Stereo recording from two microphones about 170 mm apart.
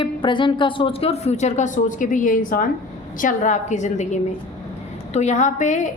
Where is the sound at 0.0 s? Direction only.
30° left (ahead or behind).